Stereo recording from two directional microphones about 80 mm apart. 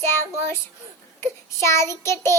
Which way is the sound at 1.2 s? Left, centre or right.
Left.